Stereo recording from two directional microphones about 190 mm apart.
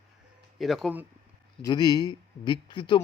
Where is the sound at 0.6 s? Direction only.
Centre (ahead or behind).